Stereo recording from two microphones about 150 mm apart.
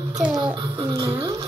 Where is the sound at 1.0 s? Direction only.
30° right (ahead or behind).